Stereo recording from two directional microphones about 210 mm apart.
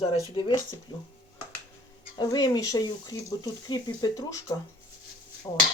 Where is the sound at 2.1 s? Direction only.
20° left (ahead or behind).